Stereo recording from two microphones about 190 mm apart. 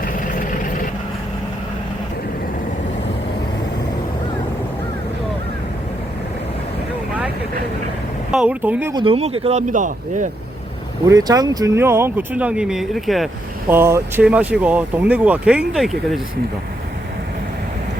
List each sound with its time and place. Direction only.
8.3 s speech: 5° right (ahead or behind)
8.9 s speech: 25° right (ahead or behind); by 10.2 s 40° right (ahead or behind)
11.1 s speech: 20° right (ahead or behind); by 13.2 s centre (ahead or behind)
13.7 s speech: 10° right (ahead or behind)